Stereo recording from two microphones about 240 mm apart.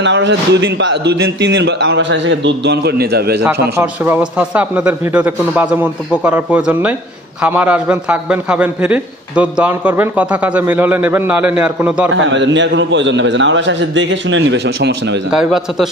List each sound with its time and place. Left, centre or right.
0.0 s speech: right
3.7 s a man's voice: centre
12.1 s speech: right
15.3 s a man's voice: centre